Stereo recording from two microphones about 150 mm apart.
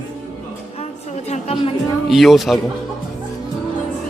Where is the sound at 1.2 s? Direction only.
45° left (ahead or behind).